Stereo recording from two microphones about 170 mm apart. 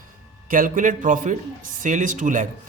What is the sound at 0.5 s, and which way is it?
Speech, 50° right (ahead or behind).